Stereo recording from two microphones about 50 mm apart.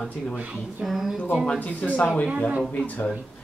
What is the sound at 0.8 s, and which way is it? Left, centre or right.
Speech, centre.